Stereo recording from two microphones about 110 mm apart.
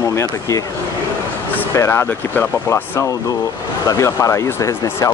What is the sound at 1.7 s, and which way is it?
Speech, 25° left (ahead or behind).